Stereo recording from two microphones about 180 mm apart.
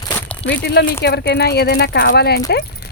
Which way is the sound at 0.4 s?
65° left (ahead or behind).